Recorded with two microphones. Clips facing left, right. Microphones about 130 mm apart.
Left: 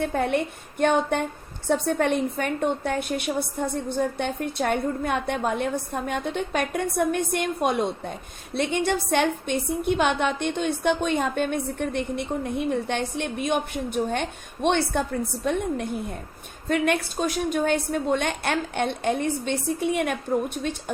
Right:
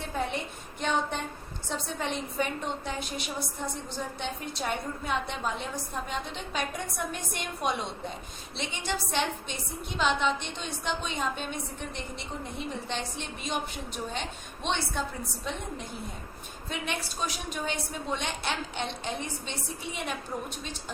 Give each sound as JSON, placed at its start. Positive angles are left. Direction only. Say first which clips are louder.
{"t": 0.0, "sound": "a woman's voice", "louder": "left 9 dB", "side_deg": 60}